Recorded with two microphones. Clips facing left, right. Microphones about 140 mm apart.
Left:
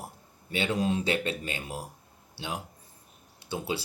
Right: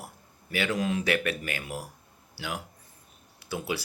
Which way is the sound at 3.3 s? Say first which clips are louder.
Even; 30° left (ahead or behind).